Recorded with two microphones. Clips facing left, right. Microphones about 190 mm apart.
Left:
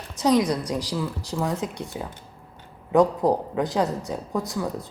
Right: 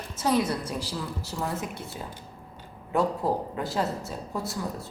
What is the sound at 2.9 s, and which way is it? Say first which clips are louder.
A woman's voice: left 6 dB; 15° left (ahead or behind).